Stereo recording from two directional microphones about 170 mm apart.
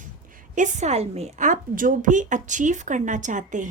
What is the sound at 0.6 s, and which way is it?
A woman's voice, 45° right (ahead or behind).